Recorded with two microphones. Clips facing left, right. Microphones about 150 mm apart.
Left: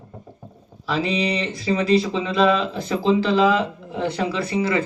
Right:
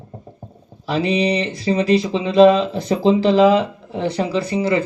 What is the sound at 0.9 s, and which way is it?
Speech, 35° right (ahead or behind).